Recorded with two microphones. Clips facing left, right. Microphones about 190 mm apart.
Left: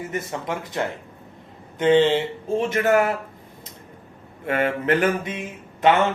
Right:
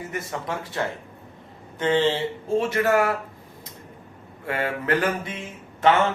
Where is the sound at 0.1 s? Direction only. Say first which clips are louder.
Left 1 dB; 20° left (ahead or behind).